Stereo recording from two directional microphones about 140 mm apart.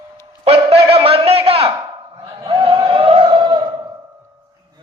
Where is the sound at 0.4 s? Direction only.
45° right (ahead or behind).